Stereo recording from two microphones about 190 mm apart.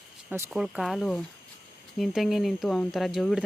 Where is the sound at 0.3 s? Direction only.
15° right (ahead or behind).